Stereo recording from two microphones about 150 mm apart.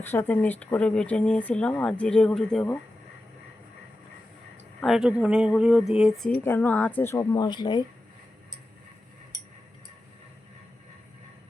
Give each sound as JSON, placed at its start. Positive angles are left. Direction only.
{"t": 0.0, "sound": "speech", "side_deg": 15}
{"t": 4.8, "sound": "speech", "side_deg": -5}